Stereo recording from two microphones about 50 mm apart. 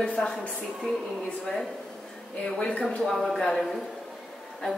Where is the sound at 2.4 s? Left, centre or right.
Left.